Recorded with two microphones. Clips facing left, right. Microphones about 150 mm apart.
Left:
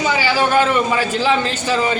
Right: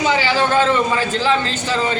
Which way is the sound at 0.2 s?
10° left (ahead or behind).